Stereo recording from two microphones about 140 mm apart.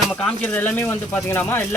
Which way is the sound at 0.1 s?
5° left (ahead or behind).